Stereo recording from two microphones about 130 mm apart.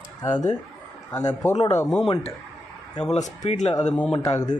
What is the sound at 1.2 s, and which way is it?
Speech, 25° left (ahead or behind).